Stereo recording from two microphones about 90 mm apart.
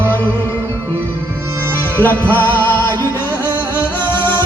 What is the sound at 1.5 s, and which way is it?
Music, 25° right (ahead or behind).